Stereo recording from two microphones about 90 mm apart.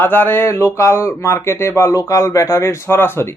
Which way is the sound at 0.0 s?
20° left (ahead or behind).